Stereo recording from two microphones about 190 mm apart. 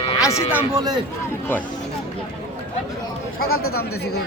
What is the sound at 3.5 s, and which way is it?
Speech, 90° left.